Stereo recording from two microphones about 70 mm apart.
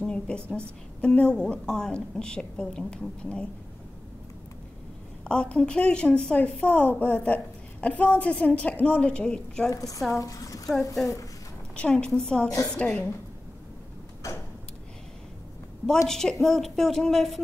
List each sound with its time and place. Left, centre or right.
0.0 s a woman's voice: centre
5.2 s a woman's voice: centre
9.7 s a woman's voice: left
11.7 s a woman's voice: centre
16.1 s a woman's voice: centre